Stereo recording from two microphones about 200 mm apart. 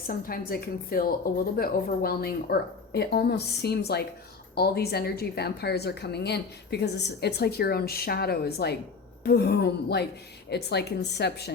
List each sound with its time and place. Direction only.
0.1 s a woman's voice: 45° left (ahead or behind)